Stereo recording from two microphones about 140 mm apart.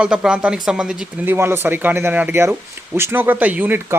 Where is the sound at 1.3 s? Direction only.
15° right (ahead or behind).